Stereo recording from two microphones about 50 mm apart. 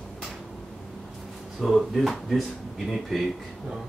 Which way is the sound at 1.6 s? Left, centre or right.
Centre.